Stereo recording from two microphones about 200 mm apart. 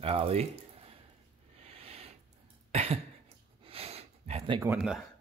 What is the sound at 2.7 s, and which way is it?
Cough, 30° right (ahead or behind).